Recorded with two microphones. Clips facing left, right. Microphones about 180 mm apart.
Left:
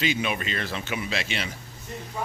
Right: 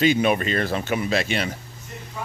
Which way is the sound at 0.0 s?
45° right (ahead or behind).